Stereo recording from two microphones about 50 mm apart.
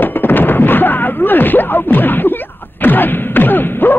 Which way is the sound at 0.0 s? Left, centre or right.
Left.